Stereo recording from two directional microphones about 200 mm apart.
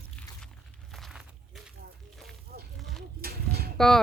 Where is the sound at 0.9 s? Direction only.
Centre (ahead or behind).